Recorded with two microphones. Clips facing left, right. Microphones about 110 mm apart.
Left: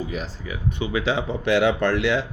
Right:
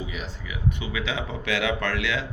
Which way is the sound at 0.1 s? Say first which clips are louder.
Left 5 dB; 35° left (ahead or behind).